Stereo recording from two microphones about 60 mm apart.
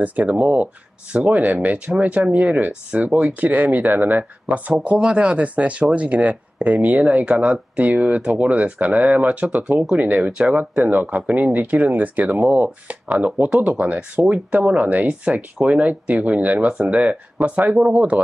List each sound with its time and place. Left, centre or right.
0.0 s speech: right
4.8 s speech: centre